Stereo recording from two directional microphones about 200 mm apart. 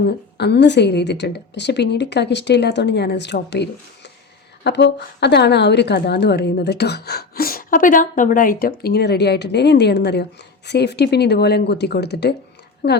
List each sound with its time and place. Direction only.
0.0 s a woman's voice: 55° left (ahead or behind)